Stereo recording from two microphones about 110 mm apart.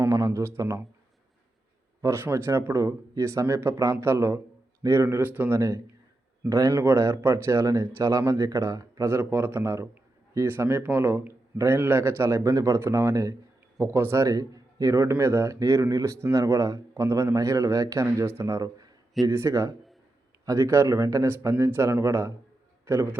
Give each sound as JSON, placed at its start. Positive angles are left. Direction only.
{"t": 0.1, "sound": "speech", "side_deg": -30}
{"t": 2.0, "sound": "a man's voice", "side_deg": -25}